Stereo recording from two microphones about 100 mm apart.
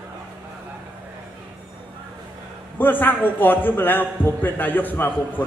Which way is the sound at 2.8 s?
20° left (ahead or behind).